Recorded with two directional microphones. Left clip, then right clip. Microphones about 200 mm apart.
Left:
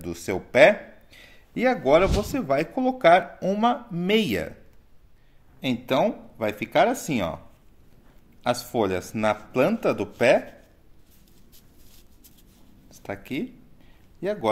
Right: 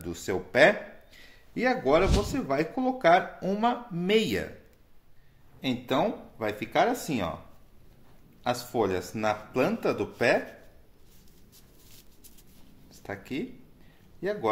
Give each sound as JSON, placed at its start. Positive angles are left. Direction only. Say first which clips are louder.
{"t": 0.0, "sound": "speech", "louder": "left 2 dB", "side_deg": 35}
{"t": 2.0, "sound": "speech", "louder": "left 3 dB", "side_deg": 0}
{"t": 2.3, "sound": "speech", "louder": "left 4 dB", "side_deg": 40}
{"t": 5.6, "sound": "speech", "louder": "left 4 dB", "side_deg": 40}
{"t": 8.4, "sound": "speech", "louder": "left 3 dB", "side_deg": 40}
{"t": 13.0, "sound": "speech", "louder": "left 4 dB", "side_deg": 40}